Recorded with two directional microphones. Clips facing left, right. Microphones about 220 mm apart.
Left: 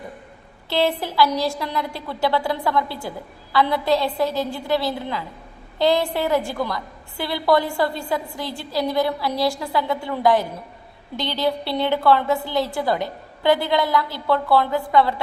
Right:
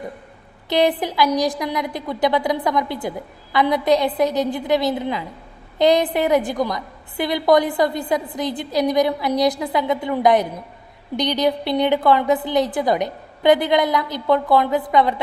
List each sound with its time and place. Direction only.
0.7 s a woman's voice: 15° right (ahead or behind)